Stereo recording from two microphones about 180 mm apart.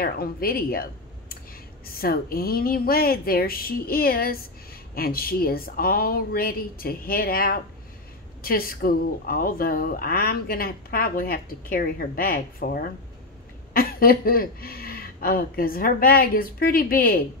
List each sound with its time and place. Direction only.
0.0 s speech: 55° left (ahead or behind)
1.9 s speech: 55° left (ahead or behind)